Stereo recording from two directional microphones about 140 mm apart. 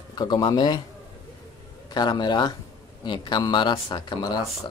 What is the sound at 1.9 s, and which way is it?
Speech, 30° left (ahead or behind).